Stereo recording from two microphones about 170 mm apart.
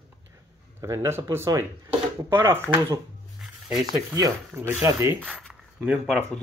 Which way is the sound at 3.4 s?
Centre (ahead or behind).